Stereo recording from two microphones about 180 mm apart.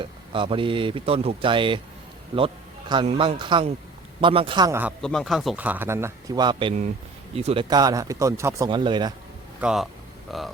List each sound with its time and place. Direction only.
0.0 s speech: 30° right (ahead or behind)
5.0 s a man's voice: centre (ahead or behind); by 9.1 s 25° right (ahead or behind)
9.6 s speech: 5° right (ahead or behind)